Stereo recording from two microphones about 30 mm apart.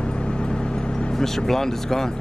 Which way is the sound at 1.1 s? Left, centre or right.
Centre.